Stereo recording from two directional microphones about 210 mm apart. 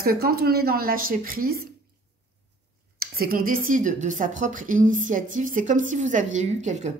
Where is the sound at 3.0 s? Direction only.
45° right (ahead or behind).